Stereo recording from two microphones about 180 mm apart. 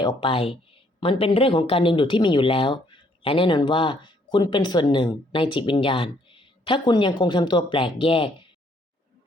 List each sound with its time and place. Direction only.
0.0 s speech: 25° left (ahead or behind)